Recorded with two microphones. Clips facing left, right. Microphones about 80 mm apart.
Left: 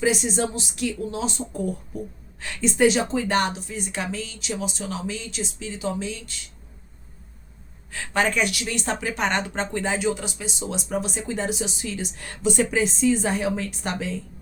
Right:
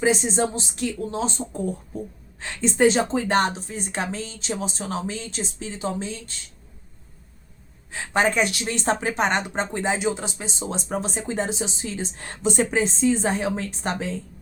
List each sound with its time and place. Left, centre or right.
0.0 s speech: right
7.9 s a woman's voice: right
9.1 s speech: right